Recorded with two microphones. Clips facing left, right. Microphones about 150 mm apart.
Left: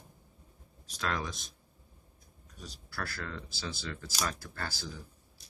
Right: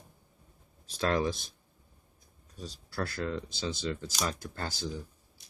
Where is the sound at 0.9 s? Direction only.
30° right (ahead or behind).